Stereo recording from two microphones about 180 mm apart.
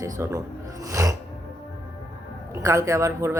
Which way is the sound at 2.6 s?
15° right (ahead or behind).